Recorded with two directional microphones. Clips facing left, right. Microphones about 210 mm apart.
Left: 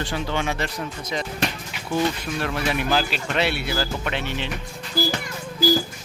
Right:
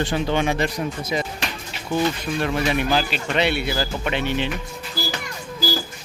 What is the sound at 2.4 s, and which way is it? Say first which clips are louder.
Speech: right 3 dB; centre (ahead or behind).